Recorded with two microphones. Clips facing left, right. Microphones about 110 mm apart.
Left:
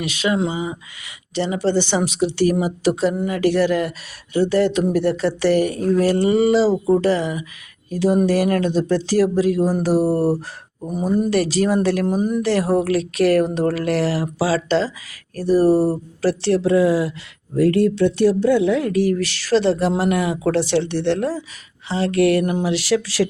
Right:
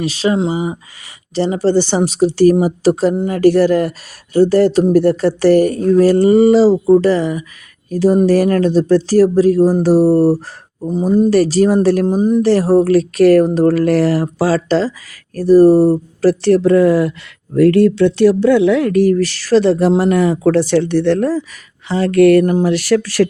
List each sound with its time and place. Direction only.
0.0 s speech: 35° right (ahead or behind)
11.3 s speech: 40° right (ahead or behind)